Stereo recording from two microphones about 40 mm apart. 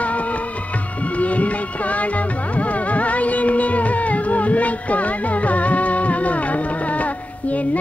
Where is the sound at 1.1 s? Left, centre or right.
Left.